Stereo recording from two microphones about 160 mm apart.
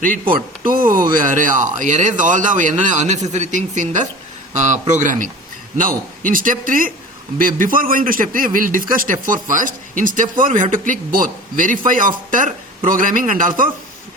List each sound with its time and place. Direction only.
0.3 s a man's voice: 60° right (ahead or behind)